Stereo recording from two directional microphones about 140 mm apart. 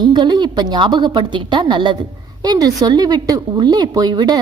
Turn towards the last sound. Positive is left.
turn(degrees=-30)  # may be behind; listen again after turning